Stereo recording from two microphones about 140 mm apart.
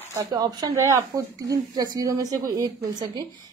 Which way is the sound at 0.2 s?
30° right (ahead or behind).